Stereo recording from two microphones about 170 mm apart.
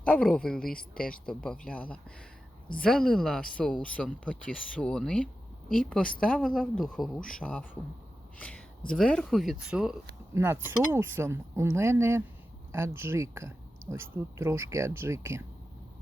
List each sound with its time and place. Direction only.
0.0 s speech: 5° left (ahead or behind)
0.6 s speech: 60° left (ahead or behind)
1.2 s speech: 5° left (ahead or behind)
10.3 s speech: 15° right (ahead or behind)